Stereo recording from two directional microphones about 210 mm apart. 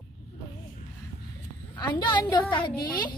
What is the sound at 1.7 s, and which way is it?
A woman's voice, 20° left (ahead or behind).